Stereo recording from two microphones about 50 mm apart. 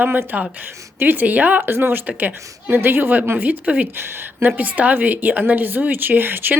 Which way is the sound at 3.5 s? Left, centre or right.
Right.